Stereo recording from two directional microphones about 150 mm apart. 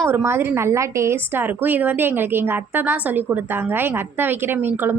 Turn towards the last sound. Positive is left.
turn(degrees=-15)  # may be behind; listen again after turning